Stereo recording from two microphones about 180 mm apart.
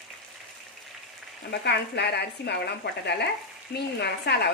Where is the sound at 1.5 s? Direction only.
65° left (ahead or behind).